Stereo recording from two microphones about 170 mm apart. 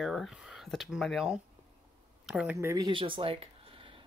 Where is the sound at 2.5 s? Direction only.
20° right (ahead or behind).